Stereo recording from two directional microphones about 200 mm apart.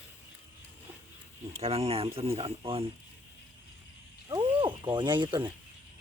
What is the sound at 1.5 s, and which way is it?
Speech, 30° right (ahead or behind).